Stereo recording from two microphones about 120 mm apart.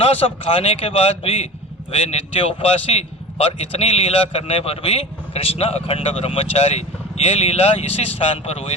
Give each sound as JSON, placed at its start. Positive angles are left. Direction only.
{"t": 0.0, "sound": "a man's voice", "side_deg": 55}